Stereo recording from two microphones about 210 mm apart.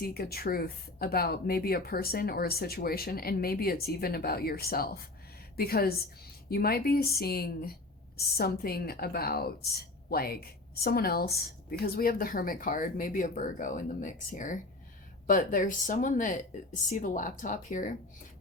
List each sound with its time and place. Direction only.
0.0 s a woman's voice: 45° left (ahead or behind)